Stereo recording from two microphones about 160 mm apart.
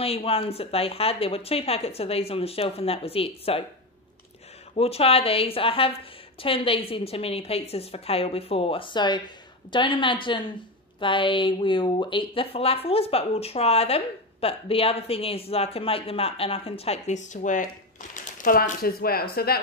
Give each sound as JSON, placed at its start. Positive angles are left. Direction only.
{"t": 0.0, "sound": "speech", "side_deg": 40}
{"t": 4.7, "sound": "speech", "side_deg": 40}